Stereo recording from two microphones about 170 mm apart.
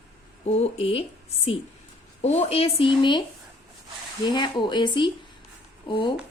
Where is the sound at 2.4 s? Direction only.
35° left (ahead or behind).